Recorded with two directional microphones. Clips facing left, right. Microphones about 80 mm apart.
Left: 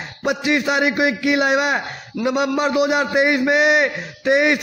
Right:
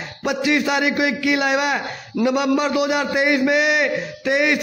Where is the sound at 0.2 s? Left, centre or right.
Left.